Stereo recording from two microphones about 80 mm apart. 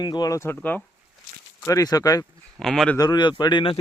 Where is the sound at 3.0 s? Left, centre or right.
Left.